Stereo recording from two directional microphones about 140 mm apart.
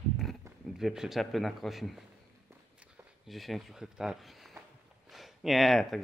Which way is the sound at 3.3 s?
Centre (ahead or behind).